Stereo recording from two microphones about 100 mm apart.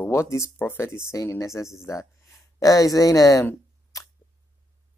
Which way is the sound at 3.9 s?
35° left (ahead or behind).